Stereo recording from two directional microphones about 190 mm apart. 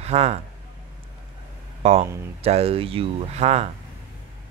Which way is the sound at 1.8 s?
35° right (ahead or behind).